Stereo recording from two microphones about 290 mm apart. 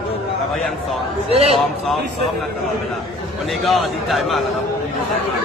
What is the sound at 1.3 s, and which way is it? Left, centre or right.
Speech, right.